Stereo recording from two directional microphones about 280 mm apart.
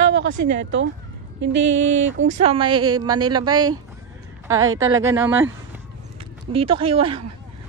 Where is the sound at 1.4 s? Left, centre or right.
Right.